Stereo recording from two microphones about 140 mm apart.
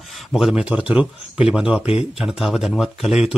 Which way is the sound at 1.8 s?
45° left (ahead or behind).